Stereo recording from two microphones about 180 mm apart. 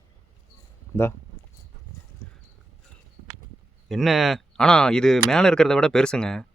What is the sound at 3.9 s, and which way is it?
Speech, centre (ahead or behind).